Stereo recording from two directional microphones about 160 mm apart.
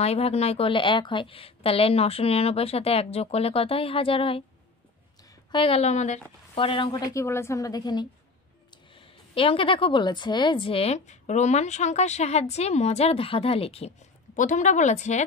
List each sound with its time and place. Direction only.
0.0 s a woman's voice: 40° left (ahead or behind)
5.5 s a woman's voice: 35° left (ahead or behind)
6.5 s a woman's voice: 35° left (ahead or behind)
14.3 s a woman's voice: 50° left (ahead or behind)